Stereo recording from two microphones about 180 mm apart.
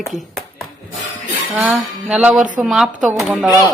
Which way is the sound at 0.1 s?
Centre (ahead or behind).